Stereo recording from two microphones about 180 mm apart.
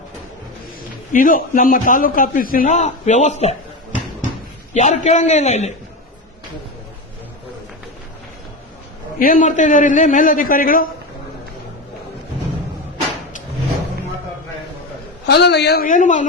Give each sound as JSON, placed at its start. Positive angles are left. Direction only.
{"t": 1.1, "sound": "a man's voice", "side_deg": 50}
{"t": 4.7, "sound": "a man's voice", "side_deg": 40}
{"t": 9.1, "sound": "a man's voice", "side_deg": 50}
{"t": 15.3, "sound": "a woman's voice", "side_deg": 70}
{"t": 15.9, "sound": "a man's voice", "side_deg": 45}